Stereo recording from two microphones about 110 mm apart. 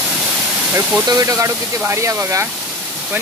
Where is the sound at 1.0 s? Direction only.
35° right (ahead or behind).